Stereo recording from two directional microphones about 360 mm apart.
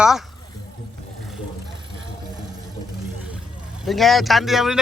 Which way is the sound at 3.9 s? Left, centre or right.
Centre.